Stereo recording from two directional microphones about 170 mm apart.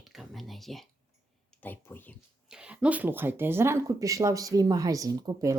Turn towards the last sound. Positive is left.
turn(degrees=-20)  # may be behind; listen again after turning